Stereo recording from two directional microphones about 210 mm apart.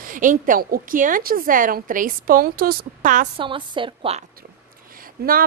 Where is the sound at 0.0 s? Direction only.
40° right (ahead or behind).